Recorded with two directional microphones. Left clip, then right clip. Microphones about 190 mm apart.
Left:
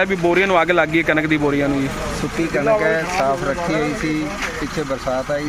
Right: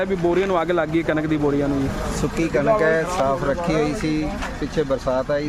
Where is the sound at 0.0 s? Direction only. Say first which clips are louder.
Left 4 dB; 5° left (ahead or behind).